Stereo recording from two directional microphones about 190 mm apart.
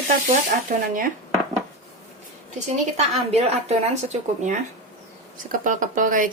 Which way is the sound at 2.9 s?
35° right (ahead or behind).